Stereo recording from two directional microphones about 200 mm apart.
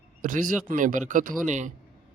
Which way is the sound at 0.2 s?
40° right (ahead or behind).